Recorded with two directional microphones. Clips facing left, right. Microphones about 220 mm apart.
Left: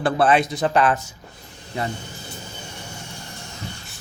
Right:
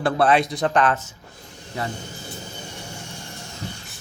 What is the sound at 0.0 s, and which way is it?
Speech, centre (ahead or behind).